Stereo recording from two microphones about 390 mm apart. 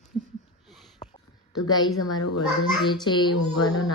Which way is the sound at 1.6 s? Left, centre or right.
Centre.